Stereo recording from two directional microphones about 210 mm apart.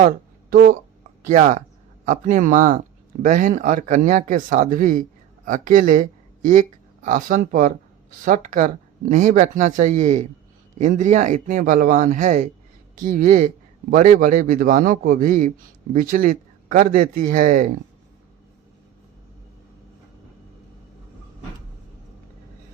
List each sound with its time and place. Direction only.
0.5 s a man's voice: 40° right (ahead or behind)